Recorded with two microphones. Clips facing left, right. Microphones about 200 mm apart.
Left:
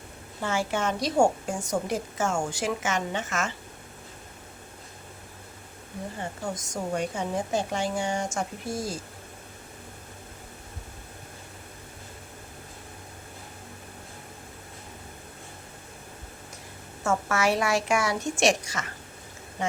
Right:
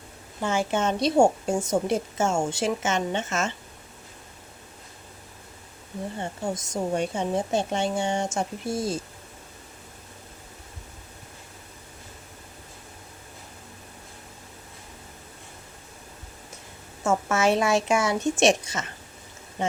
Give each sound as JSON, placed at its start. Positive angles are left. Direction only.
{"t": 0.4, "sound": "a woman's voice", "side_deg": -20}
{"t": 6.4, "sound": "a woman's voice", "side_deg": -25}
{"t": 17.0, "sound": "a woman's voice", "side_deg": -20}